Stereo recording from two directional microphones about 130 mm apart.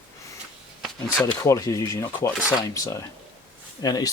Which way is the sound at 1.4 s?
25° left (ahead or behind).